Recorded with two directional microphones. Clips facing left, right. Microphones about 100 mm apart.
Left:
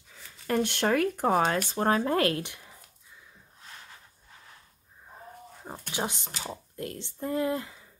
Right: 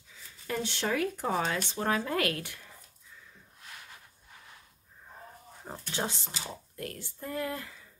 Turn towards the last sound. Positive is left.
turn(degrees=20)  # may be behind; listen again after turning